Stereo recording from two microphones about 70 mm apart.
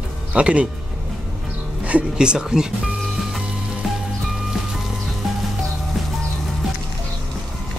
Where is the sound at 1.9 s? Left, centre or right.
Centre.